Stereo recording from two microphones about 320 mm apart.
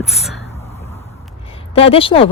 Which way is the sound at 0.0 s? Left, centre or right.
Centre.